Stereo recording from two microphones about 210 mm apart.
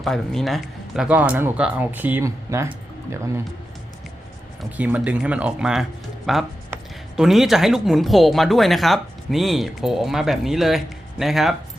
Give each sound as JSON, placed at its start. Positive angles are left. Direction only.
{"t": 0.0, "sound": "speech", "side_deg": 0}
{"t": 4.8, "sound": "speech", "side_deg": -5}